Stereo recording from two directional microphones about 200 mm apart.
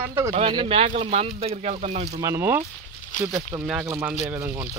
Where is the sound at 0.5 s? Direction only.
25° right (ahead or behind).